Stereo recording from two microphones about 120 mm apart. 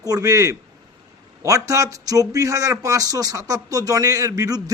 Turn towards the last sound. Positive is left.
turn(degrees=-30)  # may be behind; listen again after turning